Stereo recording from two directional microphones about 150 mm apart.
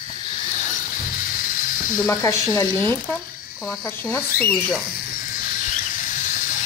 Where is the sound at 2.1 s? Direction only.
20° left (ahead or behind).